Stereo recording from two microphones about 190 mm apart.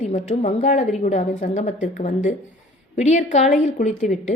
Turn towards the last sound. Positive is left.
turn(degrees=40)  # may be behind; listen again after turning